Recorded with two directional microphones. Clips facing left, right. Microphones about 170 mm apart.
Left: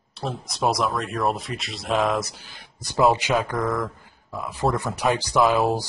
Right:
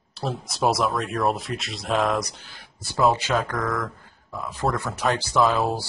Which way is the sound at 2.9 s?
15° left (ahead or behind).